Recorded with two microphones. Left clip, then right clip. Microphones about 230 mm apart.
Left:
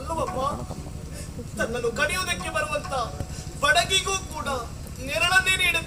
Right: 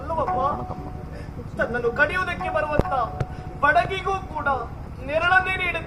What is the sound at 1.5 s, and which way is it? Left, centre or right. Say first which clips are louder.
Speech: right 3 dB; left.